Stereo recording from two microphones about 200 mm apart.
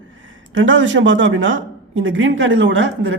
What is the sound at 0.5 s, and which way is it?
Speech, 70° right (ahead or behind).